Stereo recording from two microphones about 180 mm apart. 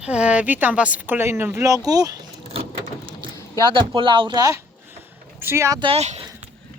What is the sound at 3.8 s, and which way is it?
Speech, 25° right (ahead or behind).